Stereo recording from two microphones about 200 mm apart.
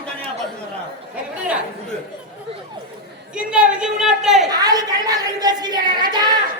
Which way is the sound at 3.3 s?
5° right (ahead or behind).